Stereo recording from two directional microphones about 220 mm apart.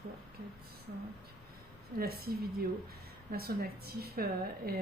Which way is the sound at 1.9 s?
45° right (ahead or behind).